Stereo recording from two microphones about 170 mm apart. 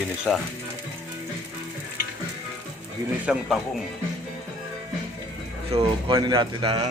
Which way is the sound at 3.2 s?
5° right (ahead or behind).